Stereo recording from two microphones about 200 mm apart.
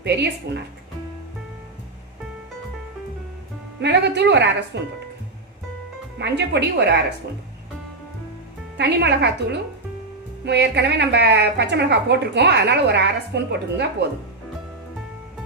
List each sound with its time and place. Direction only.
0.0 s a woman's voice: 55° right (ahead or behind)
3.8 s a woman's voice: 60° right (ahead or behind)
6.1 s a woman's voice: 60° right (ahead or behind)
8.8 s a woman's voice: 55° right (ahead or behind)